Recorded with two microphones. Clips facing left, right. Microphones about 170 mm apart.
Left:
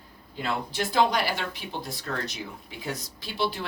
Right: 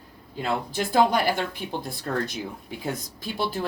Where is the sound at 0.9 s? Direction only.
50° right (ahead or behind).